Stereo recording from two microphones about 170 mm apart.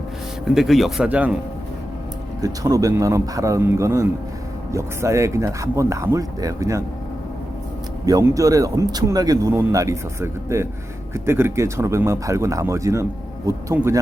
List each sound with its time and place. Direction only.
0.4 s speech: centre (ahead or behind)
2.4 s speech: 20° right (ahead or behind)
8.0 s speech: 20° right (ahead or behind)